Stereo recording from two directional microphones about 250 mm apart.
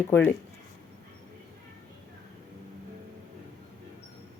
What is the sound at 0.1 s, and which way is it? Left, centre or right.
Speech, centre.